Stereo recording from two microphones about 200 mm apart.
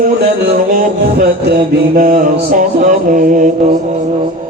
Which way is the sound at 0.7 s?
45° right (ahead or behind).